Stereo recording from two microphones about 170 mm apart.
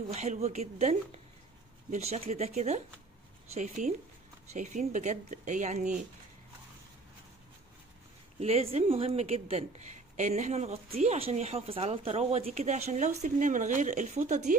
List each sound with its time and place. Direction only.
0.1 s a woman's voice: 40° right (ahead or behind)
8.4 s a woman's voice: 35° right (ahead or behind)